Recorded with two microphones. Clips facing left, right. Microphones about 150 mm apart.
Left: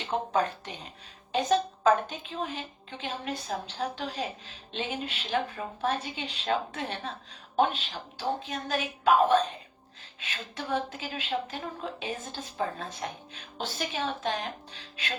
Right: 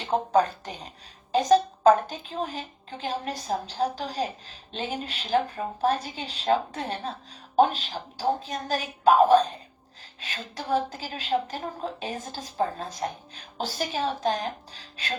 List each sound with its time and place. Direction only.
0.0 s a woman's voice: 35° right (ahead or behind)